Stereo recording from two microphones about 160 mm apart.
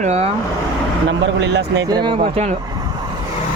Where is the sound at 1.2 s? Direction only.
90° right.